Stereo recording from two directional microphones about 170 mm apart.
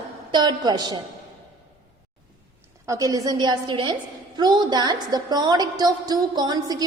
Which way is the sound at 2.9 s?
20° right (ahead or behind).